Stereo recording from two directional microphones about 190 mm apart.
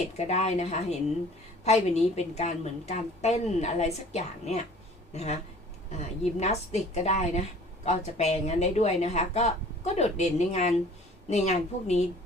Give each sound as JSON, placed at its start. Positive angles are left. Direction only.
{"t": 0.2, "sound": "a woman's voice", "side_deg": 35}